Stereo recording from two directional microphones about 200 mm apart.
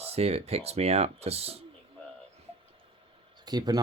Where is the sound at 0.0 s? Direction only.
30° right (ahead or behind).